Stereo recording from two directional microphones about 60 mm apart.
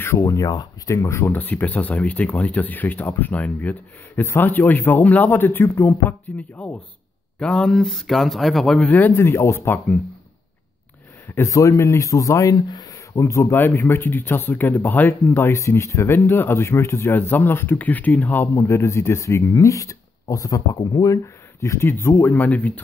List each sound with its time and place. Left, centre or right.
0.2 s speech: left
1.3 s speech: left
7.3 s speech: centre
8.8 s speech: left
9.1 s speech: left
11.4 s speech: left
13.7 s speech: left
15.5 s speech: left
18.5 s speech: left